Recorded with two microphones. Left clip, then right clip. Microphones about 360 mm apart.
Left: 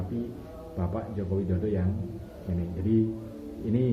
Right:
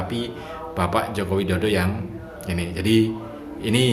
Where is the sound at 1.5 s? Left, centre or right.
Right.